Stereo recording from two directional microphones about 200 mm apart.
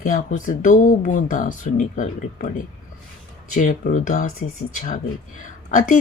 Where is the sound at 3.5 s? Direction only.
40° left (ahead or behind).